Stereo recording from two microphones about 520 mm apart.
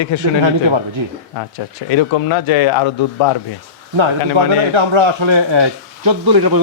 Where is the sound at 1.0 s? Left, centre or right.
Right.